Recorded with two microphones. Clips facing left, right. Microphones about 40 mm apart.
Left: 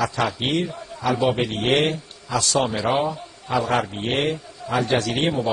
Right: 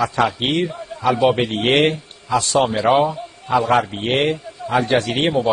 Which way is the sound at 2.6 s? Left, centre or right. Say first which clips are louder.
Right 6 dB; right.